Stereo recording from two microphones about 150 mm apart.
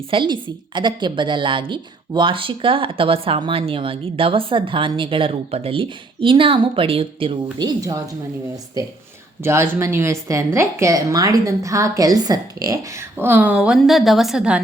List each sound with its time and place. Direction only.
0.1 s a woman's voice: 30° right (ahead or behind)
7.6 s a woman's voice: 25° right (ahead or behind)
9.4 s a woman's voice: 15° right (ahead or behind)